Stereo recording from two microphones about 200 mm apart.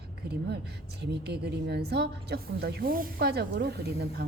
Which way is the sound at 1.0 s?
55° right (ahead or behind).